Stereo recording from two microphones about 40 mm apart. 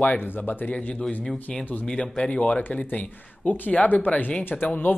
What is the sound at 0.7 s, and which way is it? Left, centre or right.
Speech, left.